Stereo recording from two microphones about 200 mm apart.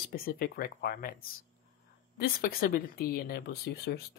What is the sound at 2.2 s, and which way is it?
Speech, 45° left (ahead or behind).